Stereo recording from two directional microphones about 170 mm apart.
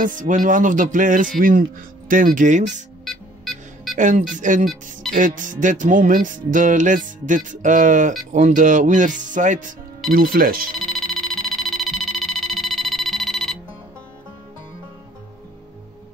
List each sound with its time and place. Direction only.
0.0 s music: 50° right (ahead or behind)
3.1 s music: centre (ahead or behind)
3.9 s a woman's voice: 50° right (ahead or behind)
4.4 s music: 50° right (ahead or behind)
10.1 s speech: 55° right (ahead or behind)
10.8 s a sound: centre (ahead or behind)